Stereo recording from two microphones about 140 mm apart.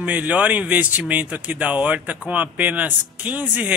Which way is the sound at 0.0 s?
10° right (ahead or behind).